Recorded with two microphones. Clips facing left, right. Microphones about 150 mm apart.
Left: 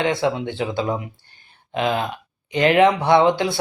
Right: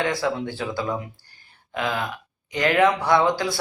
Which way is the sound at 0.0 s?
20° left (ahead or behind).